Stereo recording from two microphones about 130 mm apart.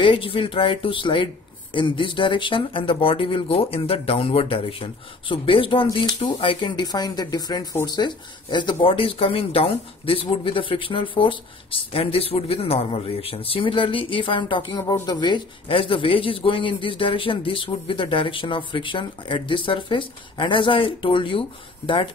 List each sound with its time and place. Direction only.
0.0 s speech: 40° left (ahead or behind)